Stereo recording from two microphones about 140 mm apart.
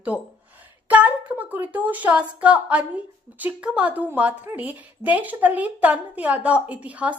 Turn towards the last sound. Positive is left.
turn(degrees=-10)  # may be behind; listen again after turning